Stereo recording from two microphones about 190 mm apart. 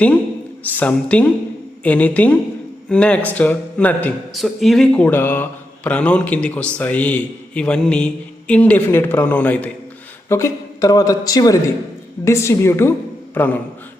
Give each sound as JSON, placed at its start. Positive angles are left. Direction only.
{"t": 0.6, "sound": "speech", "side_deg": 10}